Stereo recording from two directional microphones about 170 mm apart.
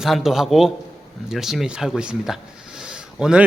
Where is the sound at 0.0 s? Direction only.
Centre (ahead or behind).